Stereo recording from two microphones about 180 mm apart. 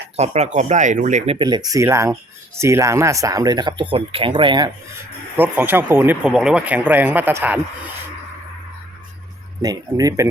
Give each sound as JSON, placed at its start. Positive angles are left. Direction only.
{"t": 0.2, "sound": "speech", "side_deg": -40}
{"t": 1.4, "sound": "speech", "side_deg": -25}
{"t": 5.4, "sound": "speech", "side_deg": -10}
{"t": 9.6, "sound": "speech", "side_deg": -20}